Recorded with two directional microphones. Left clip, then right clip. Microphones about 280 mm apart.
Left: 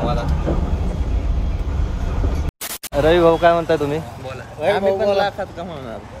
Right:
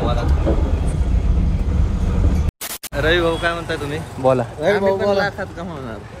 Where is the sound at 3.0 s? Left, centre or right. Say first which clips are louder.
Left 4 dB; centre.